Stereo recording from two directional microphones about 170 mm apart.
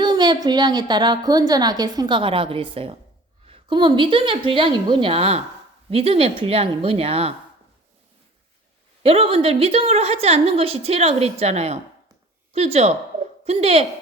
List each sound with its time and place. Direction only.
0.0 s a woman's voice: 25° right (ahead or behind)
9.0 s a woman's voice: 35° right (ahead or behind)